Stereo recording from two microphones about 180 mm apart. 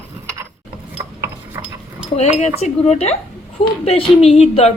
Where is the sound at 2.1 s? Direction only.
40° left (ahead or behind).